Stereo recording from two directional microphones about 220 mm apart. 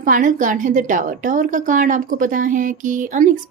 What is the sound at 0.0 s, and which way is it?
A woman's voice, 35° right (ahead or behind).